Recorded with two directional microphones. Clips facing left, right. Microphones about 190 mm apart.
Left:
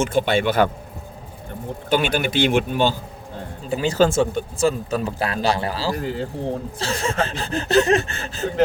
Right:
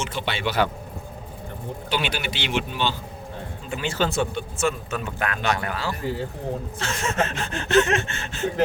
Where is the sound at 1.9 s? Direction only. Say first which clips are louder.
Left 8 dB; 50° left (ahead or behind).